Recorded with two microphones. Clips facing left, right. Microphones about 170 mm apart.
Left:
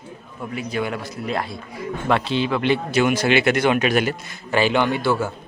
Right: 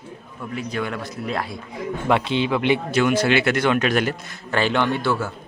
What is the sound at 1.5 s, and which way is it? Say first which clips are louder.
Speech: right 1 dB; 15° right (ahead or behind).